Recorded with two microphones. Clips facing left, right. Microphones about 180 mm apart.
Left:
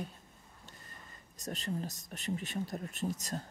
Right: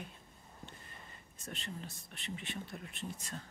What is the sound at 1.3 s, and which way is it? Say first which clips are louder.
Speech: left 8 dB; 40° left (ahead or behind).